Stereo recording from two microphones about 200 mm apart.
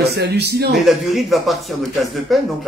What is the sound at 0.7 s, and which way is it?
Speech, centre (ahead or behind).